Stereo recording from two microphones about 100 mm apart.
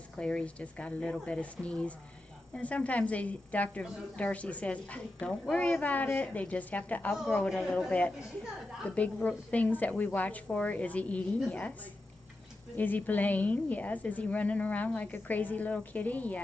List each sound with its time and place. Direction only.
0.2 s a woman's voice: 10° left (ahead or behind)
7.4 s speech: centre (ahead or behind)
7.9 s a woman's voice: 15° left (ahead or behind)
12.7 s a woman's voice: 15° left (ahead or behind)